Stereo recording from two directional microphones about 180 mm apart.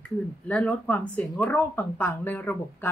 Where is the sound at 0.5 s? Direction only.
5° left (ahead or behind).